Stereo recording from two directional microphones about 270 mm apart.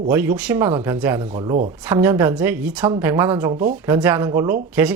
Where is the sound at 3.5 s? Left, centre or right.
Right.